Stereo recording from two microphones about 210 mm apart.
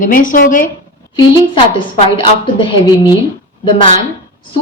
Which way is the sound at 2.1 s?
25° left (ahead or behind).